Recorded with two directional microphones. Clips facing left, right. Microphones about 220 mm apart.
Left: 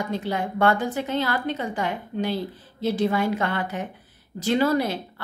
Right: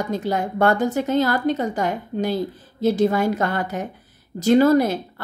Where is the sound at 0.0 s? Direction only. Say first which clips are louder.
Right 4 dB; 40° right (ahead or behind).